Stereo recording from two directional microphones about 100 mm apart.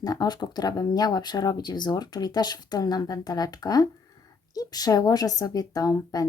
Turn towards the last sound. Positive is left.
turn(degrees=40)  # may be behind; listen again after turning